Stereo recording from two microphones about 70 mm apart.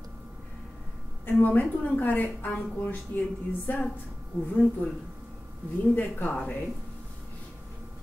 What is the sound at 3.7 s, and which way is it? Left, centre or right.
A woman's voice, left.